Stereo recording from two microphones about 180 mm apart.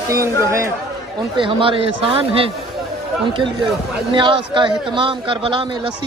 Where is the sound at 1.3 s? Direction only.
30° right (ahead or behind).